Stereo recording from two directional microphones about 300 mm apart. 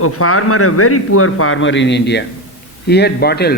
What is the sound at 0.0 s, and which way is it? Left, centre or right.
A man's voice, left.